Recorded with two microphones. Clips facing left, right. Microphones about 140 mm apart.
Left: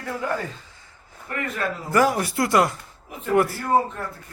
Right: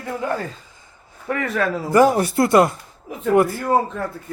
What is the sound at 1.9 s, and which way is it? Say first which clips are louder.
A man's voice: right 5 dB; 25° right (ahead or behind).